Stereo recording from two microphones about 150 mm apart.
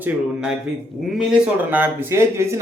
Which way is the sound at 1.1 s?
10° right (ahead or behind).